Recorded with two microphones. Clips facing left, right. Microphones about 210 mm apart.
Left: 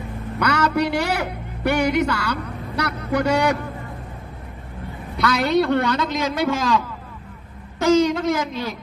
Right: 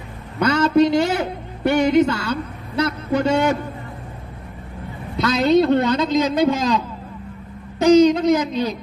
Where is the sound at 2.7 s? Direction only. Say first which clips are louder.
Right 3 dB; 25° right (ahead or behind).